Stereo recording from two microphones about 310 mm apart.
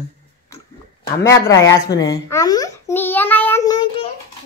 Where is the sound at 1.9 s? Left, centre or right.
Centre.